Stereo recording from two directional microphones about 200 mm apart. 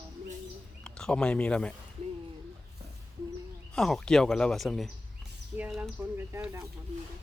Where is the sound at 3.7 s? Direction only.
Centre (ahead or behind).